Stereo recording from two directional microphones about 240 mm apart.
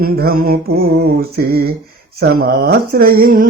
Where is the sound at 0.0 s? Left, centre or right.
Right.